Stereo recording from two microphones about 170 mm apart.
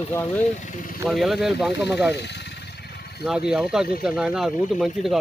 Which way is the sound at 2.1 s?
85° left.